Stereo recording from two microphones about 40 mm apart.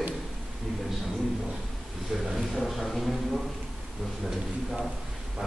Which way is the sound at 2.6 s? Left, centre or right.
Centre.